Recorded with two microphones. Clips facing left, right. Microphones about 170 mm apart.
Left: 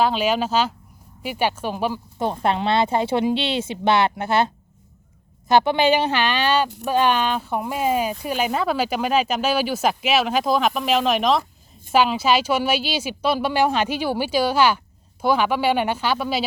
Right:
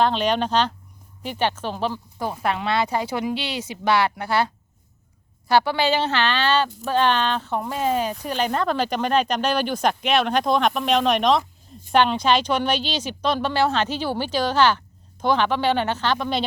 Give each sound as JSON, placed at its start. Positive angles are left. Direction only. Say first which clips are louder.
{"t": 0.0, "sound": "speech", "louder": "even", "side_deg": 5}
{"t": 2.1, "sound": "speech", "louder": "left 3 dB", "side_deg": 25}